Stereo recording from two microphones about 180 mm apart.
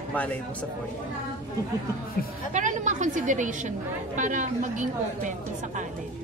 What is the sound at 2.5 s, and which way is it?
A woman's voice, 45° right (ahead or behind).